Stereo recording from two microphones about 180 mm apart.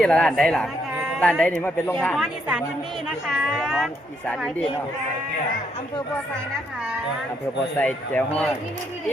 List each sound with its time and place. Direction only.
0.0 s a man's voice: 5° left (ahead or behind)
2.2 s a man's voice: 5° right (ahead or behind)
7.8 s a man's voice: 5° left (ahead or behind)